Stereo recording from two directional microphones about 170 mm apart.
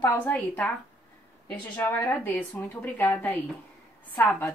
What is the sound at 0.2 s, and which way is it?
A woman's voice, 5° left (ahead or behind).